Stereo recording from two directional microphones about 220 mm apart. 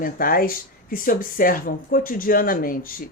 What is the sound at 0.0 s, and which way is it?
A woman's voice, 40° left (ahead or behind).